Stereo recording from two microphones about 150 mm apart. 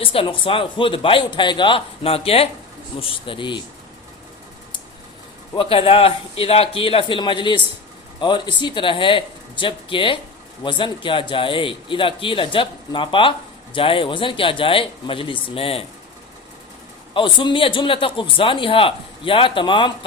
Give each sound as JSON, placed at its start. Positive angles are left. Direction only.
{"t": 0.0, "sound": "a man's voice", "side_deg": 35}
{"t": 5.5, "sound": "a man's voice", "side_deg": 35}
{"t": 17.2, "sound": "a man's voice", "side_deg": 35}